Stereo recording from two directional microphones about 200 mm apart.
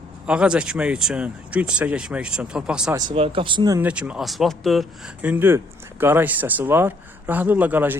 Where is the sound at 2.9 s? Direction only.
25° right (ahead or behind).